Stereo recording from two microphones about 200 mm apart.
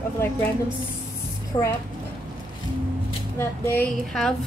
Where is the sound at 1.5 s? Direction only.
25° left (ahead or behind).